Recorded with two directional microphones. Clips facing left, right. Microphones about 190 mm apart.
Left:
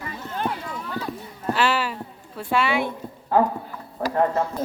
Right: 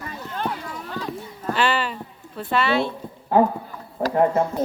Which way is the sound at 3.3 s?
20° right (ahead or behind).